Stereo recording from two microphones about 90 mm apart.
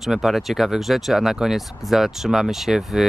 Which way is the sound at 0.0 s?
Centre (ahead or behind).